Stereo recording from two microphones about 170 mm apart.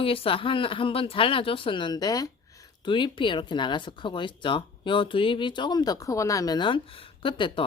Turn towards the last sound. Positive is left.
turn(degrees=30)  # may be behind; listen again after turning